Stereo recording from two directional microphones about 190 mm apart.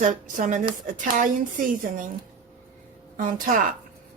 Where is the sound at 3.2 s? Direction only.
45° right (ahead or behind).